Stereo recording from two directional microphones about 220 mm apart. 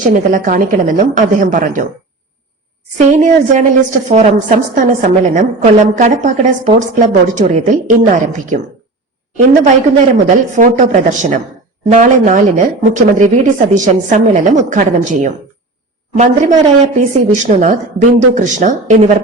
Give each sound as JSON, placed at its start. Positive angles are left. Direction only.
{"t": 0.0, "sound": "a woman's voice", "side_deg": -35}
{"t": 3.0, "sound": "a woman's voice", "side_deg": -35}
{"t": 10.2, "sound": "a woman's voice", "side_deg": -35}